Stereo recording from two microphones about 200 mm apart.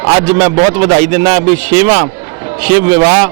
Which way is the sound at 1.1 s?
15° right (ahead or behind).